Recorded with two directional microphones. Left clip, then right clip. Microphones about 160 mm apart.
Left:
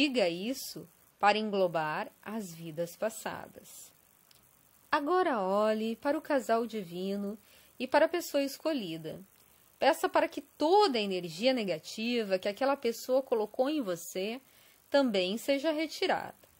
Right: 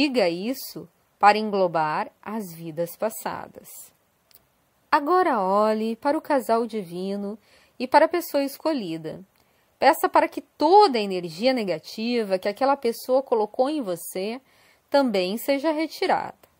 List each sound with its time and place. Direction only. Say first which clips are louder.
0.0 s a woman's voice: right 7 dB; 20° right (ahead or behind)
4.8 s a woman's voice: right 9 dB; 20° right (ahead or behind)